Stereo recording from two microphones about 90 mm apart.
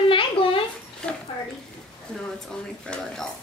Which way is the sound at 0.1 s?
80° left.